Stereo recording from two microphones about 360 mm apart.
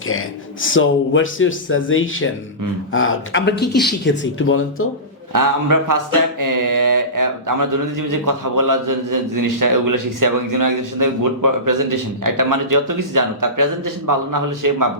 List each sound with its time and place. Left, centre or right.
0.6 s speech: left
5.3 s mantra: right